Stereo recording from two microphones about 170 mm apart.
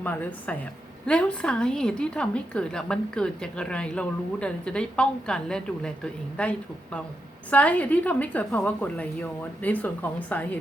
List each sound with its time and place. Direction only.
0.0 s a woman's voice: 10° left (ahead or behind)